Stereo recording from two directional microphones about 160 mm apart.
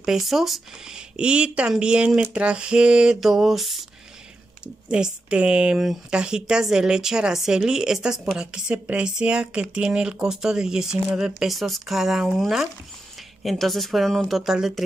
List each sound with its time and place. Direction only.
0.0 s speech: centre (ahead or behind)
4.8 s speech: 5° right (ahead or behind)